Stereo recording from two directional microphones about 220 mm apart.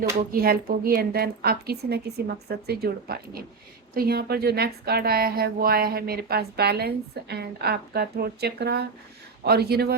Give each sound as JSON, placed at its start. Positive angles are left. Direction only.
{"t": 0.3, "sound": "a woman's voice", "side_deg": -45}